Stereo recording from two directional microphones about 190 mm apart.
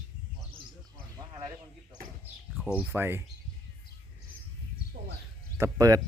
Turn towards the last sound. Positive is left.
turn(degrees=-20)  # may be behind; listen again after turning